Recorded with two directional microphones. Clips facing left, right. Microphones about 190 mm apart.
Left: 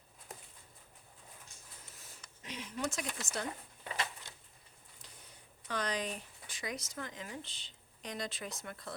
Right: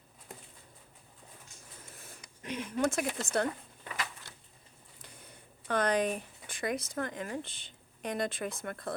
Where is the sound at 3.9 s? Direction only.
25° left (ahead or behind).